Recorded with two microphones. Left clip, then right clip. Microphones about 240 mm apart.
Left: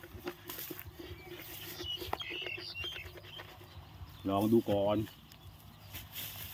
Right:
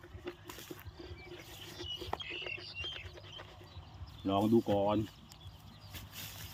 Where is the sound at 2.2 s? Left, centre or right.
Left.